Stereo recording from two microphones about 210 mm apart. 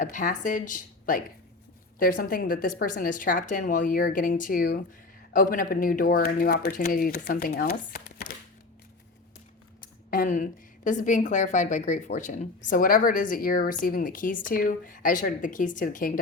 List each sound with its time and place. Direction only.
0.0 s speech: 40° left (ahead or behind)
10.1 s speech: 40° left (ahead or behind)